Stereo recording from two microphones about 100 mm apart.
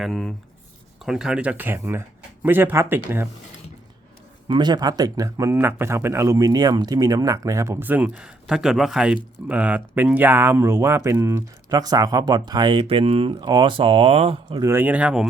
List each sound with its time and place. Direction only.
0.0 s speech: centre (ahead or behind); by 3.2 s 20° right (ahead or behind)
4.4 s speech: 45° right (ahead or behind)
7.8 s speech: 15° right (ahead or behind); by 13.3 s 70° right (ahead or behind)
13.4 s speech: 50° right (ahead or behind); by 14.6 s 70° right (ahead or behind)
14.7 s speech: 15° right (ahead or behind)